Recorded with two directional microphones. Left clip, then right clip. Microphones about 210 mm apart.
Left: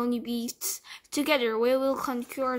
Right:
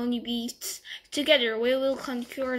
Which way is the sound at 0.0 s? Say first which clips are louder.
Left 1 dB; 55° left (ahead or behind).